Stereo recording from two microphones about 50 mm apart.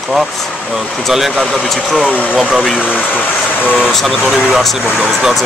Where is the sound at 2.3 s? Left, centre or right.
Centre.